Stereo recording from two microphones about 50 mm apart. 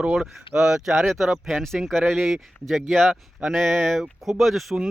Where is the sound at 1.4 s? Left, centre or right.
Centre.